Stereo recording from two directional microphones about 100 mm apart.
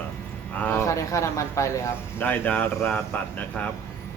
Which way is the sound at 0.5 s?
20° left (ahead or behind).